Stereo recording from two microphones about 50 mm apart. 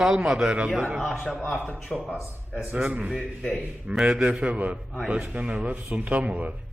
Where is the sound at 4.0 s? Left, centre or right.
Right.